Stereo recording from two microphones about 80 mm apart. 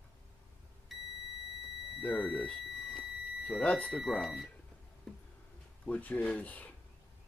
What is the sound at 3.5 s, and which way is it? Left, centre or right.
Speech, centre.